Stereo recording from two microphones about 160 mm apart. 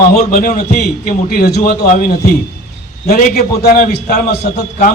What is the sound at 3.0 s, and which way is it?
Speech, 75° left (ahead or behind).